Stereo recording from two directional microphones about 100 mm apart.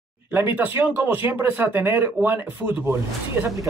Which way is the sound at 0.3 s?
20° right (ahead or behind).